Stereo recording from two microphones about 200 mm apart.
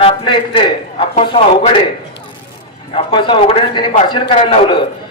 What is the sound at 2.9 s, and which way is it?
A man's voice, 25° left (ahead or behind).